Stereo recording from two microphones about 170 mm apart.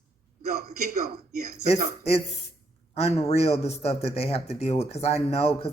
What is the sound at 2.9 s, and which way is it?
A man's voice, 35° left (ahead or behind).